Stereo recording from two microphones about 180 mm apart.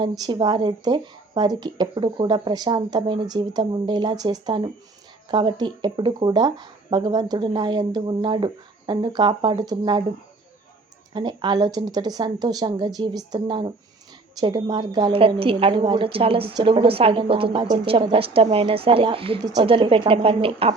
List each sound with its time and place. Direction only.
0.0 s speech: 25° right (ahead or behind)
11.1 s speech: 25° right (ahead or behind)